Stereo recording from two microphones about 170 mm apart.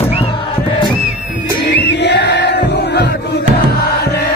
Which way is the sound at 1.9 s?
90° left.